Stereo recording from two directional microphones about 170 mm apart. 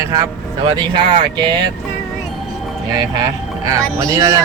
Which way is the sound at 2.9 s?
25° right (ahead or behind).